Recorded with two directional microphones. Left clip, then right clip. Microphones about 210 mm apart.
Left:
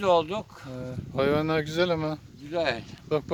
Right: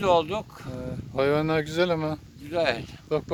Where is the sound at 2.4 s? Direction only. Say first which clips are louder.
Right 2 dB; 25° right (ahead or behind).